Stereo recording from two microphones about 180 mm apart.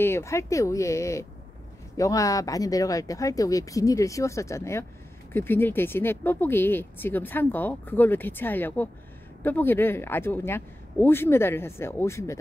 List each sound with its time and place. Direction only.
0.0 s speech: 15° left (ahead or behind)